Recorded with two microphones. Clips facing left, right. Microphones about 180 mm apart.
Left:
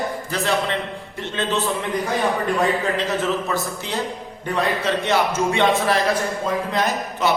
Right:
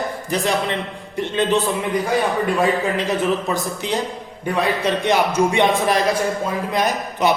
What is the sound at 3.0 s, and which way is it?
A man's voice, 15° right (ahead or behind).